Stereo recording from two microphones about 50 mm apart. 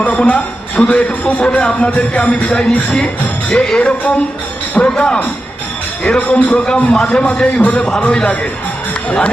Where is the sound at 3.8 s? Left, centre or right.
Left.